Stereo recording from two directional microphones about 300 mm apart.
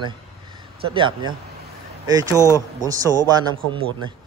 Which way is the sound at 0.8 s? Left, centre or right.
Centre.